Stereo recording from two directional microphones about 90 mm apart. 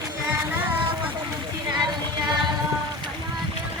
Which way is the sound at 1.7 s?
55° right (ahead or behind).